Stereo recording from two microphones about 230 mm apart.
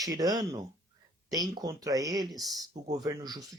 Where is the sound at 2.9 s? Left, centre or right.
Centre.